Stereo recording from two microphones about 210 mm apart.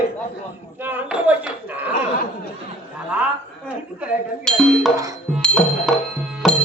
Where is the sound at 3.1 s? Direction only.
5° right (ahead or behind).